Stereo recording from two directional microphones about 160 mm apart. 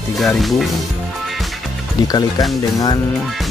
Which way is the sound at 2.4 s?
25° left (ahead or behind).